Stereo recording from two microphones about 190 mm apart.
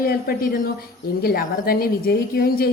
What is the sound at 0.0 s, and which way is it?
A woman's voice, 50° left (ahead or behind).